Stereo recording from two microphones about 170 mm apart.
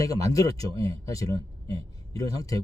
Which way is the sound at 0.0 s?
20° left (ahead or behind).